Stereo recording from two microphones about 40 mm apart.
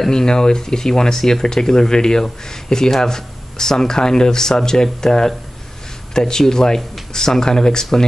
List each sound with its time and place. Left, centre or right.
0.1 s speech: centre